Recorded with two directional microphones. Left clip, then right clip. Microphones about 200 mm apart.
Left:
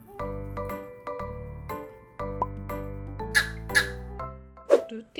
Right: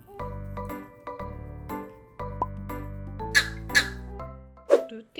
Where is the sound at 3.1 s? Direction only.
10° left (ahead or behind).